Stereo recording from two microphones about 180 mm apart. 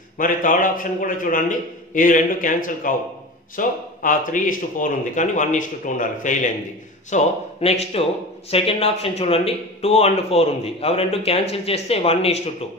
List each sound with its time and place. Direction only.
0.2 s a man's voice: 45° left (ahead or behind)